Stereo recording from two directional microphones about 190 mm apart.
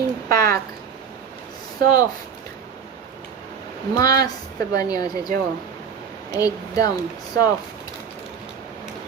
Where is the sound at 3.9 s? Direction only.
20° left (ahead or behind).